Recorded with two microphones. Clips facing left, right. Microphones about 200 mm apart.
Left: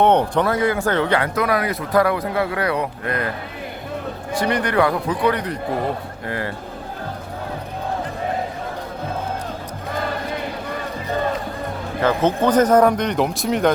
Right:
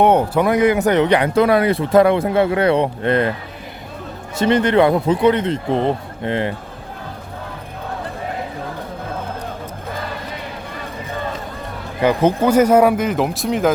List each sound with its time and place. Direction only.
0.0 s speech: 10° right (ahead or behind); by 3.2 s 25° right (ahead or behind)
4.4 s speech: 25° right (ahead or behind)
12.0 s speech: 10° right (ahead or behind)